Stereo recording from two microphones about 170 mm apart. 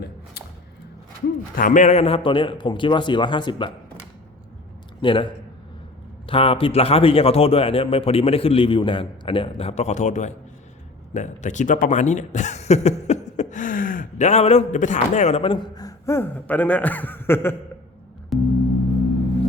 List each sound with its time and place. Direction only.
1.5 s a man's voice: 50° left (ahead or behind); by 3.7 s 25° left (ahead or behind)
4.9 s a man's voice: 30° left (ahead or behind); by 17.6 s 15° left (ahead or behind)
18.3 s gong: centre (ahead or behind)